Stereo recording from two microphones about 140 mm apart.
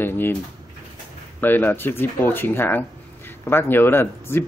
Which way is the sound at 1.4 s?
15° left (ahead or behind).